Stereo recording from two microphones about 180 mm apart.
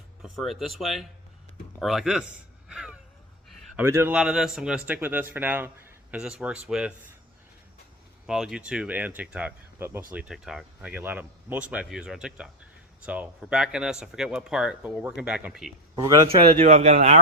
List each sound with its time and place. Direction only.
0.2 s speech: centre (ahead or behind)
2.6 s a sound: 5° right (ahead or behind)
3.8 s speech: 15° right (ahead or behind)
8.3 s speech: 5° right (ahead or behind)
16.0 s speech: 20° right (ahead or behind)
16.3 s speech: 30° right (ahead or behind)